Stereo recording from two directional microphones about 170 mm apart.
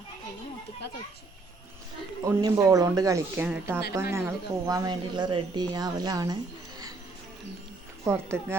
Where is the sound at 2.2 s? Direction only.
20° right (ahead or behind).